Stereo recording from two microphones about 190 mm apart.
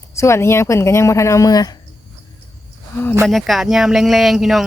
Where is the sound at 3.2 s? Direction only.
Centre (ahead or behind).